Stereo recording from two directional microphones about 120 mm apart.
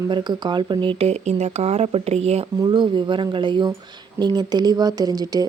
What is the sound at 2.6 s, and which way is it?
Speech, 40° right (ahead or behind).